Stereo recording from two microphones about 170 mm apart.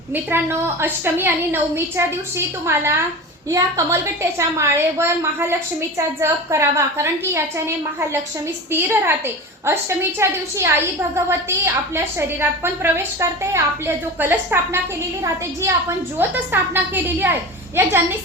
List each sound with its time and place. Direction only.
0.1 s a woman's voice: 15° right (ahead or behind)
16.1 s a woman's voice: 10° right (ahead or behind)